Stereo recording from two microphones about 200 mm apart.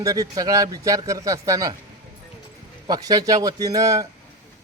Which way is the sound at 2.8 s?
20° right (ahead or behind).